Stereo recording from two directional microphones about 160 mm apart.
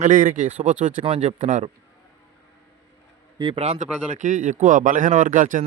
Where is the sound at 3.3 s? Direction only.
35° right (ahead or behind).